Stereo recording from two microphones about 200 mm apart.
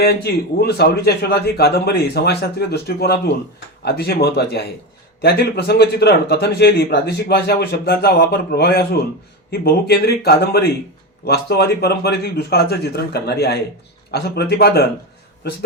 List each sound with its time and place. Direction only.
0.0 s a man's voice: 50° left (ahead or behind)